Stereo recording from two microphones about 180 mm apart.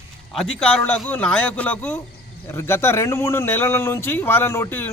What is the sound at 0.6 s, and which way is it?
Speech, 5° left (ahead or behind).